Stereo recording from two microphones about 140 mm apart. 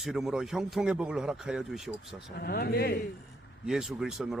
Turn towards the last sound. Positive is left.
turn(degrees=0)  # may be behind; listen again after turning